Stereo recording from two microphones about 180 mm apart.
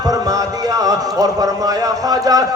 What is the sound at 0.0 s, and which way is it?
Speech, 20° right (ahead or behind).